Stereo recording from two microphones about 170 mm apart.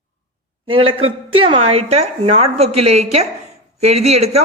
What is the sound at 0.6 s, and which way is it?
A woman's voice, 30° right (ahead or behind).